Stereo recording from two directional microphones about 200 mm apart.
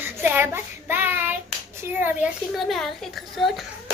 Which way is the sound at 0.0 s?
10° right (ahead or behind).